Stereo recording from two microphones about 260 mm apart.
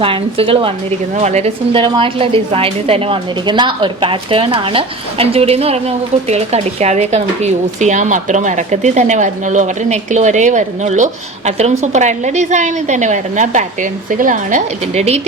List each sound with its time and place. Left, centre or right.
0.0 s a woman's voice: right